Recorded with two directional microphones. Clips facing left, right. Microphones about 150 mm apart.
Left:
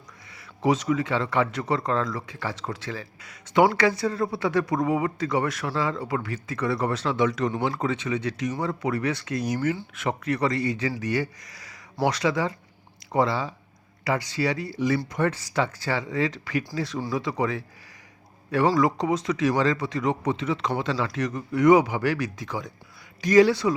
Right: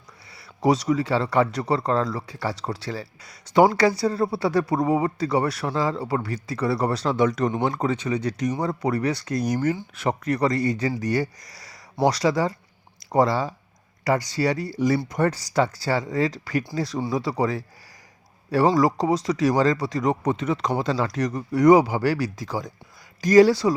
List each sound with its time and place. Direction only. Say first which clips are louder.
0.3 s a man's voice: right 2 dB; 35° right (ahead or behind)